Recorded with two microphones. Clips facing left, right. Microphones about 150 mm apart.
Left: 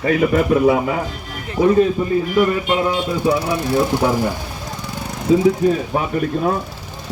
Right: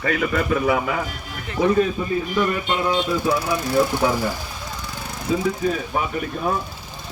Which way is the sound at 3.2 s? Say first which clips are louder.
Left 4 dB; 30° left (ahead or behind).